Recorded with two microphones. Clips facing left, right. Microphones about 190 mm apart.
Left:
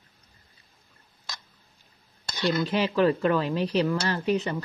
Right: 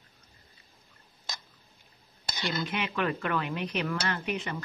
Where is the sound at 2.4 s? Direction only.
30° left (ahead or behind).